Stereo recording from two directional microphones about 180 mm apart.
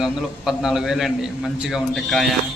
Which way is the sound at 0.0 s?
Centre (ahead or behind).